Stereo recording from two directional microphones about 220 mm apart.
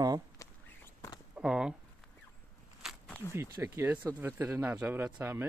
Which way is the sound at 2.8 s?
5° left (ahead or behind).